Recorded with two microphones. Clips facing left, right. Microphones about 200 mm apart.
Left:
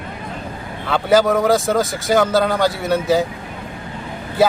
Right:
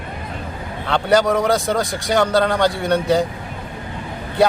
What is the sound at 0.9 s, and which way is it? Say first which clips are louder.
Speech: left 1 dB; 5° left (ahead or behind).